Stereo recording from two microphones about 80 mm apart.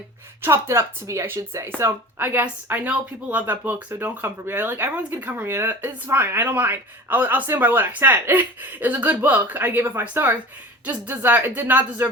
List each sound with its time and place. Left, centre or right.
0.4 s speech: right